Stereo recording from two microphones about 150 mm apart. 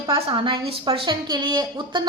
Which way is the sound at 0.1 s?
35° right (ahead or behind).